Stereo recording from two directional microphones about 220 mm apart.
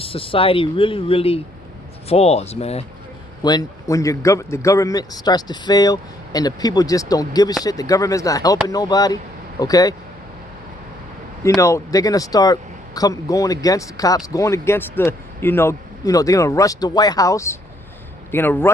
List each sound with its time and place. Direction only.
0.0 s speech: 25° left (ahead or behind)
3.4 s speech: 15° left (ahead or behind)
11.4 s speech: 15° left (ahead or behind)